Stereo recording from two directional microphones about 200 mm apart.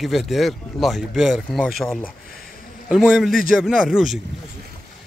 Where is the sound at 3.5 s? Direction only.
5° right (ahead or behind).